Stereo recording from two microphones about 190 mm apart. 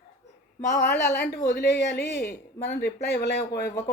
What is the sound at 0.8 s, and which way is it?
Speech, 55° left (ahead or behind).